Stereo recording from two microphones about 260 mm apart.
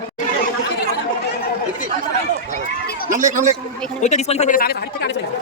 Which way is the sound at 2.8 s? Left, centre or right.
Left.